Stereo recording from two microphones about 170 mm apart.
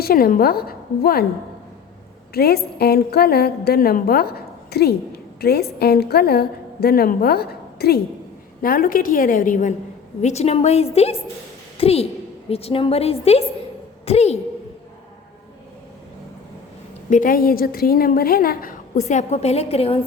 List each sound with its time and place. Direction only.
0.0 s a woman's voice: 60° left (ahead or behind)
2.3 s a woman's voice: 65° left (ahead or behind); by 14.3 s 40° left (ahead or behind)
17.1 s a woman's voice: 55° left (ahead or behind)
19.0 s a woman's voice: 40° left (ahead or behind)